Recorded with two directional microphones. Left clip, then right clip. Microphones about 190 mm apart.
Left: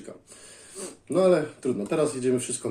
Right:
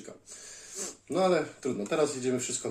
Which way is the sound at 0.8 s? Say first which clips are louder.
Left 5 dB; 5° left (ahead or behind).